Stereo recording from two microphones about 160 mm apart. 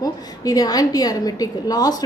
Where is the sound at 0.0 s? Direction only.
25° left (ahead or behind).